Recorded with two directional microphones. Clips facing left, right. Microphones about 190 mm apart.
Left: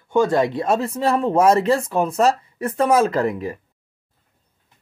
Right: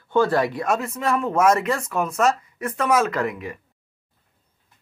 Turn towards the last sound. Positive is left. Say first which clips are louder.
# left 5 dB
turn(degrees=35)  # may be behind; listen again after turning